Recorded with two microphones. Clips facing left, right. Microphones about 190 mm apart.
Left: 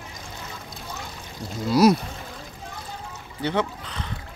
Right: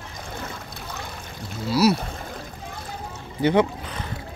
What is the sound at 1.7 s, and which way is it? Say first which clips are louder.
Speech: left 2 dB; 50° left (ahead or behind).